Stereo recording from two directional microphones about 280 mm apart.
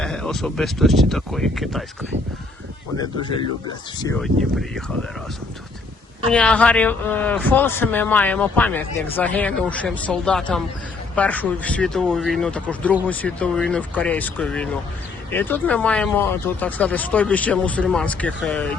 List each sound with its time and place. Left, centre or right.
0.0 s speech: centre
3.0 s speech: centre
4.2 s speech: centre
6.3 s speech: centre